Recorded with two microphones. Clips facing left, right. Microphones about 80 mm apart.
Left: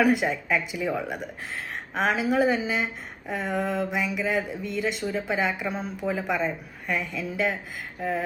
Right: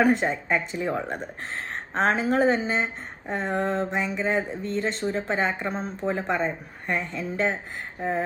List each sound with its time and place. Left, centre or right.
0.0 s speech: right